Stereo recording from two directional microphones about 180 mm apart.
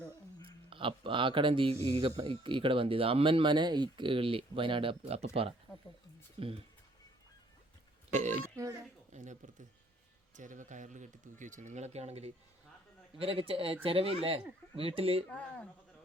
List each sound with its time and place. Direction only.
0.4 s a man's voice: 30° right (ahead or behind)
8.1 s a man's voice: 40° right (ahead or behind)
15.3 s speech: 5° left (ahead or behind)